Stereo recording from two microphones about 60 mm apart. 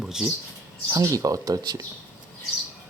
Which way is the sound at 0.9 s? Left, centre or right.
Right.